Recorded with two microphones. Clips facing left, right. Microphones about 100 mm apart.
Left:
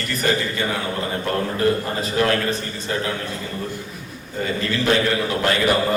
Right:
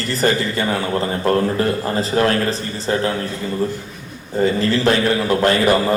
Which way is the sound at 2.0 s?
30° right (ahead or behind).